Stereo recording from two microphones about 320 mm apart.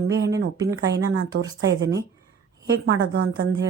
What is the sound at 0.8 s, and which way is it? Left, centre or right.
A woman's voice, right.